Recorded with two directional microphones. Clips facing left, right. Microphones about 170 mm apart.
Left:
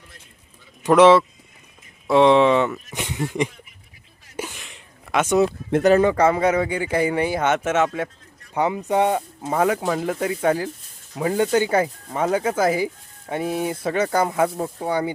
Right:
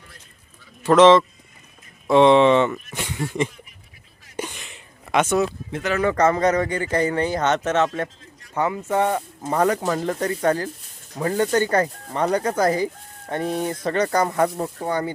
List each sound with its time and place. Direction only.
0.8 s speech: 15° left (ahead or behind)
2.9 s speech: 15° left (ahead or behind)
4.4 s a sound: 5° left (ahead or behind)
6.0 s speech: 15° left (ahead or behind)